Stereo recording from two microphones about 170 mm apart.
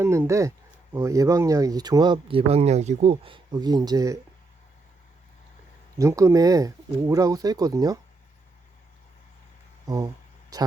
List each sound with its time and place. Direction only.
0.0 s speech: 15° right (ahead or behind)
6.0 s speech: 20° right (ahead or behind)
9.8 s speech: 20° right (ahead or behind)